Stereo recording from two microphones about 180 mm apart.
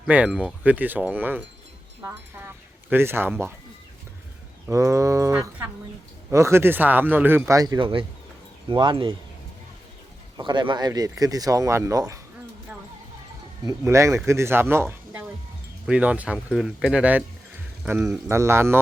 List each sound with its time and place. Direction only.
0.0 s speech: 5° right (ahead or behind)
4.7 s speech: 15° right (ahead or behind)
10.3 s speech: 25° right (ahead or behind)
13.7 s speech: 15° right (ahead or behind)